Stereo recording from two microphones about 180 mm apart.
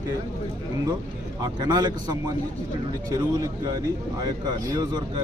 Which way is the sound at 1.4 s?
20° right (ahead or behind).